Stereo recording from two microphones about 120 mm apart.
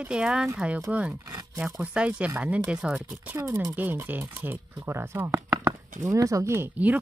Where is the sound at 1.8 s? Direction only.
10° right (ahead or behind).